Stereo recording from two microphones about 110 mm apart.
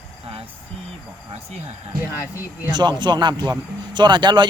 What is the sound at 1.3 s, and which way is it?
Speech, 90° right.